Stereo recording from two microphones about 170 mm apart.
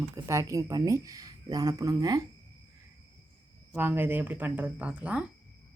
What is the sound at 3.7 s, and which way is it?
Speech, 10° right (ahead or behind).